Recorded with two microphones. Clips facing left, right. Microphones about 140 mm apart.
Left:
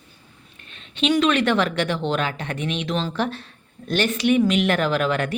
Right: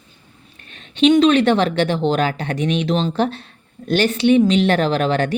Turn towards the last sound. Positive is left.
turn(degrees=-30)  # may be behind; listen again after turning